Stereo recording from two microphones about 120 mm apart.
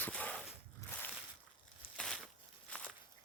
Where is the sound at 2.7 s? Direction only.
10° left (ahead or behind).